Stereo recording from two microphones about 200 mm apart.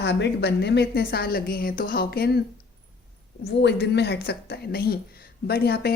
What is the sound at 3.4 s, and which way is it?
A woman's voice, 55° left (ahead or behind).